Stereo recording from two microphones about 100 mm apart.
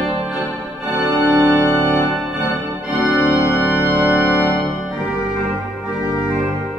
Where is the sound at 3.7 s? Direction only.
15° right (ahead or behind).